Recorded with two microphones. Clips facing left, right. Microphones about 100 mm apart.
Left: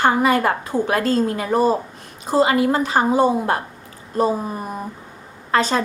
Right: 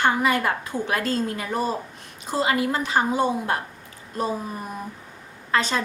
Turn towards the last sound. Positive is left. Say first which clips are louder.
# left 5 dB
turn(degrees=40)  # may be behind; listen again after turning